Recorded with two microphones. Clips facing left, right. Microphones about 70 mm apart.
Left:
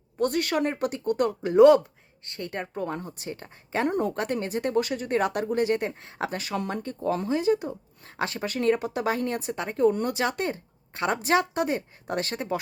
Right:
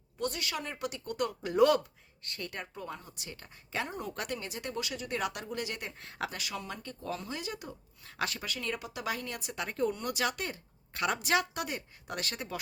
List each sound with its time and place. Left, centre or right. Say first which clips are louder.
0.2 s speech: left 11 dB; left
2.7 s speech: left 11 dB; left
3.8 s speech: left 14 dB; left
4.1 s speech: left 10 dB; left